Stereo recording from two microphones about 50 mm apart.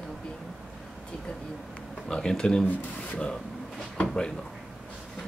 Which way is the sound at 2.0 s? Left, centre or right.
Centre.